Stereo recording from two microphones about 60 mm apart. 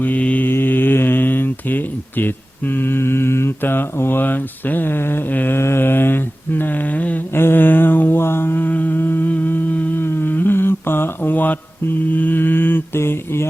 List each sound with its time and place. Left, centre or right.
0.0 s mantra: left
5.5 s a sound: left
7.3 s mantra: left